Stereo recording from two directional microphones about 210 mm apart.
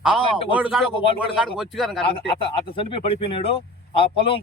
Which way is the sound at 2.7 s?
25° left (ahead or behind).